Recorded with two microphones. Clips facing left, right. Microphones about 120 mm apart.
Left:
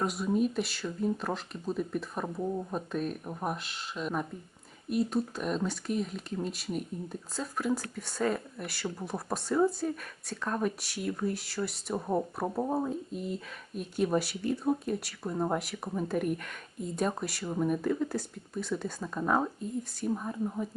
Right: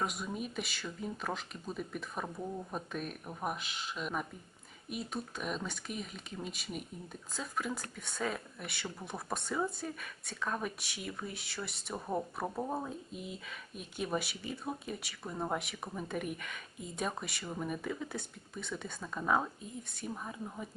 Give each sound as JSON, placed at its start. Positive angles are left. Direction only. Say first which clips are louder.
{"t": 0.0, "sound": "speech", "louder": "left 9 dB", "side_deg": 0}
{"t": 2.2, "sound": "speech", "louder": "left 7 dB", "side_deg": 10}
{"t": 2.9, "sound": "speech", "louder": "left 7 dB", "side_deg": 0}
{"t": 11.9, "sound": "speech", "louder": "left 5 dB", "side_deg": 15}
{"t": 12.8, "sound": "speech", "louder": "left 8 dB", "side_deg": 0}